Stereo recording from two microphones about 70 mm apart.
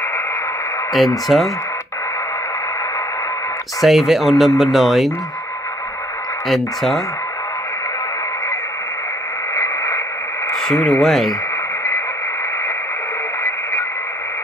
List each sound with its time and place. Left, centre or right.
0.9 s speech: centre
3.8 s speech: centre
6.5 s speech: centre
10.5 s speech: centre